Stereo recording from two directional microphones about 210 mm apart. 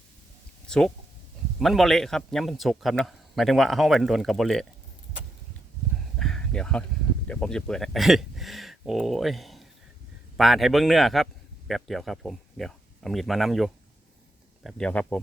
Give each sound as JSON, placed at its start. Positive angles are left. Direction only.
{"t": 0.7, "sound": "speech", "side_deg": 5}
{"t": 6.1, "sound": "a sound", "side_deg": 0}
{"t": 7.3, "sound": "speech", "side_deg": 5}